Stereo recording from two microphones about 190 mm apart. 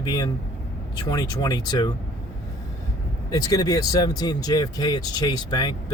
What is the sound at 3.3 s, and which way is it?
Speech, 20° left (ahead or behind).